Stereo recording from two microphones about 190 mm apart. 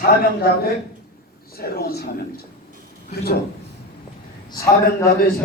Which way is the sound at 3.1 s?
55° left (ahead or behind).